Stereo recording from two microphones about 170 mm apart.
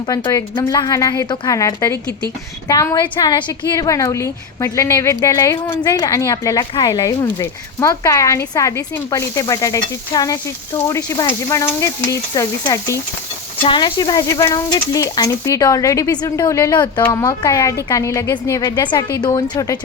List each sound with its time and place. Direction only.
0.1 s a woman's voice: 20° left (ahead or behind)